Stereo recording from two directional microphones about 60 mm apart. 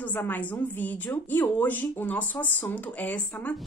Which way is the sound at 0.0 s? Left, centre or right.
Left.